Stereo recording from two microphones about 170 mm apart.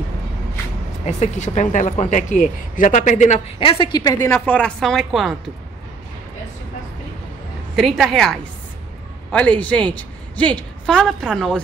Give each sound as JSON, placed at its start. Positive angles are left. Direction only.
{"t": 1.0, "sound": "speech", "side_deg": 45}
{"t": 7.7, "sound": "a woman's voice", "side_deg": 0}